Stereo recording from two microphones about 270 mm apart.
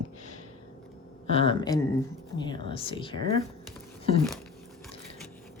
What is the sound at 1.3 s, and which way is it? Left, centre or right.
Speech, centre.